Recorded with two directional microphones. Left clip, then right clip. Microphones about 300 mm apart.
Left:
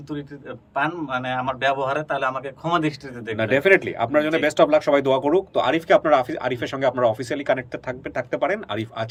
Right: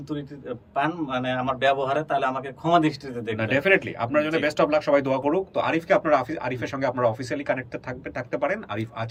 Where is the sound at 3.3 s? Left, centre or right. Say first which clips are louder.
Left 4 dB; centre.